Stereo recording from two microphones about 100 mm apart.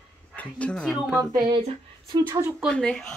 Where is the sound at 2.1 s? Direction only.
35° right (ahead or behind).